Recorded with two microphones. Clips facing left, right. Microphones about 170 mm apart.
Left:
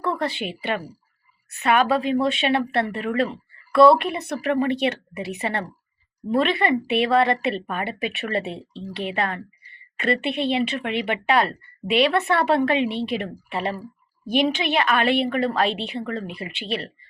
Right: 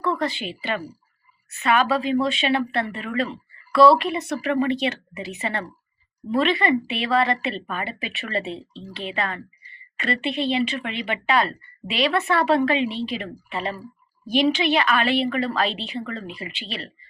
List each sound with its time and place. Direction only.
0.0 s a woman's voice: 55° left (ahead or behind)